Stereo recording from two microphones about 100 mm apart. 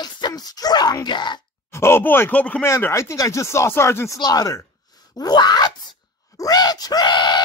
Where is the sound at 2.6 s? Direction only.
30° left (ahead or behind).